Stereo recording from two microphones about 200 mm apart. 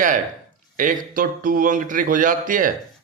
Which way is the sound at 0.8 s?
45° right (ahead or behind).